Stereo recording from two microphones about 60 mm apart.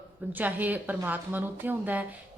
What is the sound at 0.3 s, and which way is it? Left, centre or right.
A woman's voice, right.